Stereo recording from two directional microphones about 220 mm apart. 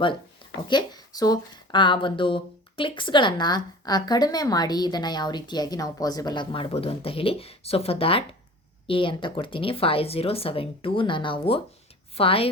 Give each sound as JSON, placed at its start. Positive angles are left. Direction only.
{"t": 0.7, "sound": "speech", "side_deg": 20}